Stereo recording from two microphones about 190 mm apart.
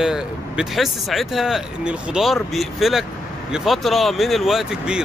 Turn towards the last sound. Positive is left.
turn(degrees=-5)  # may be behind; listen again after turning